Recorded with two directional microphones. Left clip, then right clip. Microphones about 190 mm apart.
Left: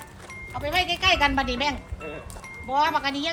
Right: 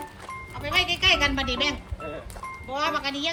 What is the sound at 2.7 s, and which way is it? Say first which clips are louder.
Speech: left 4 dB; 55° left (ahead or behind).